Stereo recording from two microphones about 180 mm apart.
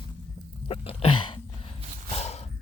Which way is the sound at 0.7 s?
30° left (ahead or behind).